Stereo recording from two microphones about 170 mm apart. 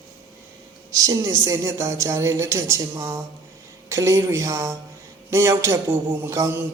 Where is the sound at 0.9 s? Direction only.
20° right (ahead or behind).